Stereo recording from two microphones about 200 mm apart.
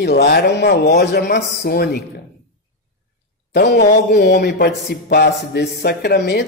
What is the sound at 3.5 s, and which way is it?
A man's voice, 60° left (ahead or behind).